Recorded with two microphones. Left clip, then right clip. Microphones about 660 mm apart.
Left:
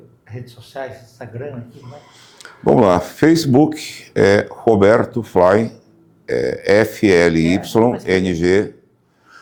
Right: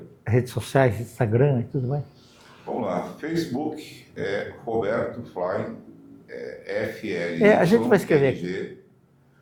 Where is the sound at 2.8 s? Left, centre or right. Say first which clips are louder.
Left 12 dB; left.